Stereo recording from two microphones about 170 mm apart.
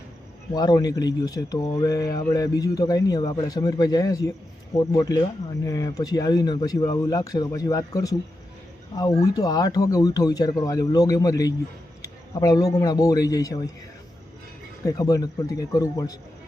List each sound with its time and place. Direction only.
0.5 s a man's voice: 25° left (ahead or behind)
14.8 s speech: 20° left (ahead or behind)